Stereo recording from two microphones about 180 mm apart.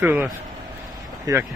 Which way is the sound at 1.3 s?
20° right (ahead or behind).